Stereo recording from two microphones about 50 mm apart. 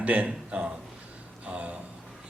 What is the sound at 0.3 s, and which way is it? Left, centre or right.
Speech, centre.